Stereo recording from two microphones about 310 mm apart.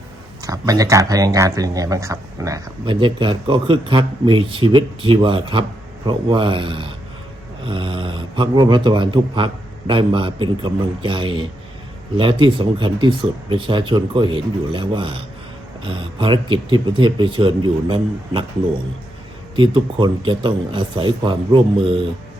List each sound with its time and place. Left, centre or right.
0.4 s speech: centre
19.5 s speech: centre